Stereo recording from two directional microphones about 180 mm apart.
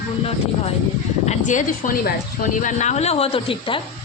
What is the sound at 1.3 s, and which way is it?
A woman's voice, 45° left (ahead or behind).